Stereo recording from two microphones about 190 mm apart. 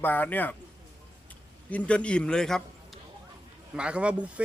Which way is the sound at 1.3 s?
5° left (ahead or behind).